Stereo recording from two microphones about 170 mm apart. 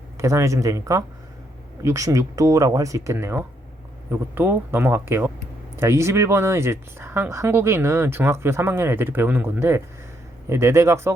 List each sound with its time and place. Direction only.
0.2 s speech: 15° right (ahead or behind)